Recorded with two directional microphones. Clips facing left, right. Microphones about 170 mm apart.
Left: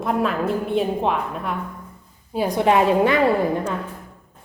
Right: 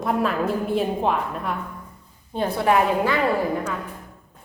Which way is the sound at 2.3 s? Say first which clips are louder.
Left 2 dB; 10° left (ahead or behind).